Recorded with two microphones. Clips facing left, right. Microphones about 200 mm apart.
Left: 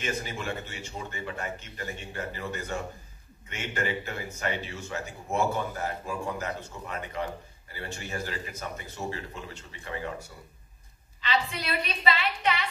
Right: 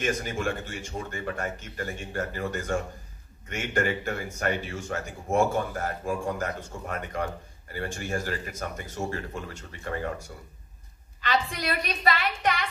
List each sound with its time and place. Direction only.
0.0 s speech: 45° right (ahead or behind)
11.1 s speech: 45° right (ahead or behind)